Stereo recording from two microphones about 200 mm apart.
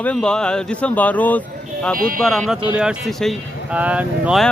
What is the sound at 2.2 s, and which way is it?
A man's voice, centre (ahead or behind).